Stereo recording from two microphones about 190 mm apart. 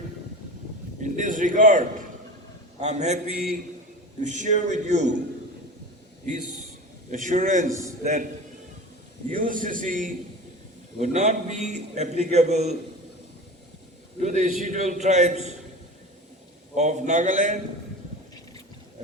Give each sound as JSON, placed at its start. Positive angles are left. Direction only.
{"t": 1.0, "sound": "a man's voice", "side_deg": -40}
{"t": 4.2, "sound": "a man's voice", "side_deg": -40}
{"t": 6.2, "sound": "a man's voice", "side_deg": -40}
{"t": 9.3, "sound": "a man's voice", "side_deg": -45}
{"t": 14.2, "sound": "a man's voice", "side_deg": -40}
{"t": 16.7, "sound": "a man's voice", "side_deg": -40}